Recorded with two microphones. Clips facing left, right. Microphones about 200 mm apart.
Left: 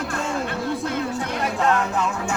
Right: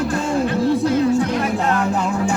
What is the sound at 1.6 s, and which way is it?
Music, 35° right (ahead or behind).